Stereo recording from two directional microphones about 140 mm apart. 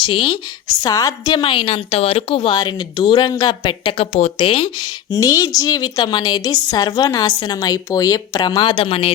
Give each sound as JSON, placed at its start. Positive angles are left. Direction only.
{"t": 0.1, "sound": "a woman's voice", "side_deg": 35}
{"t": 5.1, "sound": "a woman's voice", "side_deg": 25}